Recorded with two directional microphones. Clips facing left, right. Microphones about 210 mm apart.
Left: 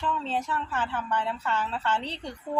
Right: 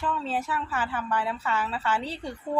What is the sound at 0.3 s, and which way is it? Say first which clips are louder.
Speech: right 1 dB; 5° right (ahead or behind).